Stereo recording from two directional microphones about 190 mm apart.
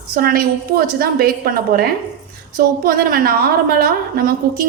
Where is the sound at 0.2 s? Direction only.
50° right (ahead or behind).